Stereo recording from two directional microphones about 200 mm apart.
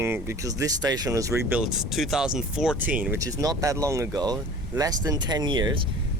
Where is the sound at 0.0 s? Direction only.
15° right (ahead or behind).